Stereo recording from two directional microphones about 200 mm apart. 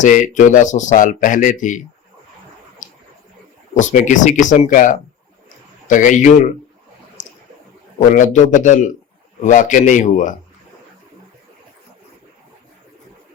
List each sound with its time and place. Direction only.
0.0 s speech: 40° left (ahead or behind)
3.8 s speech: 40° left (ahead or behind)
7.9 s speech: 40° left (ahead or behind)